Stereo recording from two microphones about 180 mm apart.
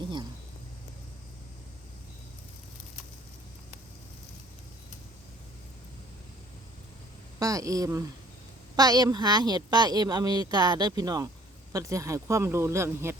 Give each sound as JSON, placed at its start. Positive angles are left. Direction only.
{"t": 7.3, "sound": "a woman's voice", "side_deg": -20}